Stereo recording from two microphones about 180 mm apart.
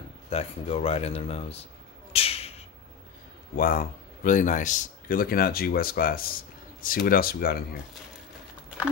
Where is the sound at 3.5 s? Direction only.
55° left (ahead or behind).